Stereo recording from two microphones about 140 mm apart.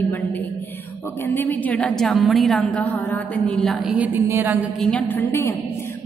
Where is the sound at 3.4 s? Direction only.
Centre (ahead or behind); by 4.5 s 15° right (ahead or behind).